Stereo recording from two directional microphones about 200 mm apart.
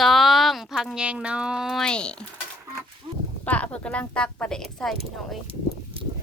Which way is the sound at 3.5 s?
5° left (ahead or behind).